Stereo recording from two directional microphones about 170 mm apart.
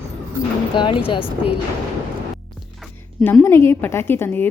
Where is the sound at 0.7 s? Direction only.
30° left (ahead or behind).